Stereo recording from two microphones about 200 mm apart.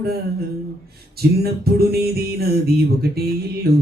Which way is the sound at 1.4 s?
50° right (ahead or behind).